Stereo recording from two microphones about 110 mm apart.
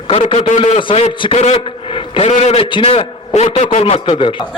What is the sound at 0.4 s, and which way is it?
Speech, 50° left (ahead or behind).